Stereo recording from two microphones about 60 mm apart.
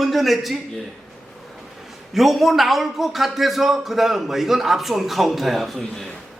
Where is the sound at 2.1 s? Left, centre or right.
Centre.